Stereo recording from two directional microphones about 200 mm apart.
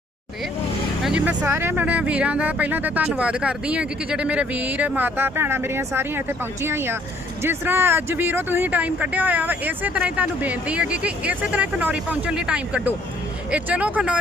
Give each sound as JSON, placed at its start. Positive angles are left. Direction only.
{"t": 1.0, "sound": "speech", "side_deg": -5}